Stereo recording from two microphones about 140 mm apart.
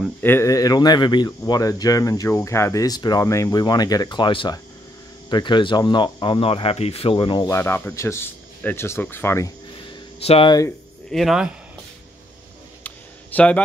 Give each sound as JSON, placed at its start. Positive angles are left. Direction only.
{"t": 0.2, "sound": "speech", "side_deg": 15}
{"t": 7.4, "sound": "speech", "side_deg": 20}
{"t": 10.2, "sound": "speech", "side_deg": 45}
{"t": 11.1, "sound": "speech", "side_deg": 0}
{"t": 12.8, "sound": "a sound", "side_deg": 10}